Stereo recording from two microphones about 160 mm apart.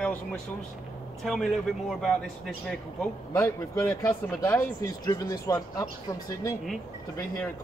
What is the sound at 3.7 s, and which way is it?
Speech, 20° left (ahead or behind).